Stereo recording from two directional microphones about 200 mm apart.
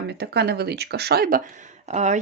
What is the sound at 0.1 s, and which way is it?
Speech, 55° right (ahead or behind).